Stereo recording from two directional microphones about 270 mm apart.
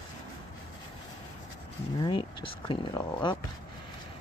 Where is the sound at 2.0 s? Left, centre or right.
Centre.